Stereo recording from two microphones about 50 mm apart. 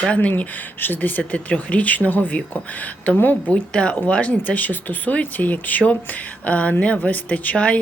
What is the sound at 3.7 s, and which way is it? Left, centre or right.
Speech, left.